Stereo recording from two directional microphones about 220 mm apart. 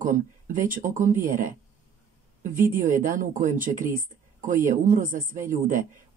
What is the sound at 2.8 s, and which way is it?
Speech, 35° right (ahead or behind).